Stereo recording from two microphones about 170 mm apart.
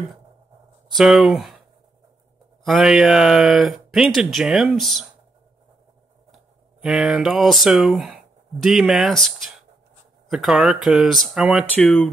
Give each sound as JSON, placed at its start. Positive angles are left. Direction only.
{"t": 0.9, "sound": "speech", "side_deg": 0}
{"t": 2.6, "sound": "speech", "side_deg": 0}
{"t": 6.3, "sound": "speech", "side_deg": -5}
{"t": 11.7, "sound": "speech", "side_deg": 10}